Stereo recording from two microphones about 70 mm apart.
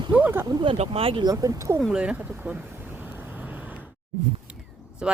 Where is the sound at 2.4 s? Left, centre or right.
Right.